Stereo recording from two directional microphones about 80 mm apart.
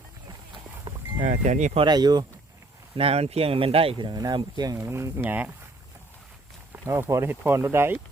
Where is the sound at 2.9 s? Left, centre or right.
Right.